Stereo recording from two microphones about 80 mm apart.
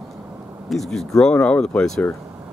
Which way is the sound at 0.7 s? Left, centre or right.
Centre.